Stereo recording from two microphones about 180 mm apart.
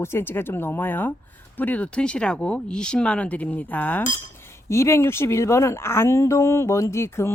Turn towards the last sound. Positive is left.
turn(degrees=15)  # may be behind; listen again after turning